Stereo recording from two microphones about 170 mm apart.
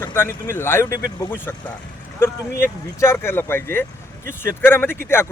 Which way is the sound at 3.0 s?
15° left (ahead or behind).